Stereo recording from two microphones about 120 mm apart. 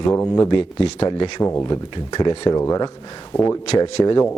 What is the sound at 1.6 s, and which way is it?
A man's voice, 35° left (ahead or behind).